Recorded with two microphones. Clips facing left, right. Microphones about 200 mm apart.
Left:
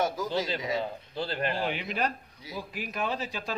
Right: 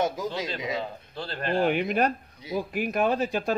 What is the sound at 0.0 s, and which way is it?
Speech, 20° right (ahead or behind).